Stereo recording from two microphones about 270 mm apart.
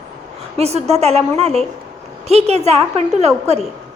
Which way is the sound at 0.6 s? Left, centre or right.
Right.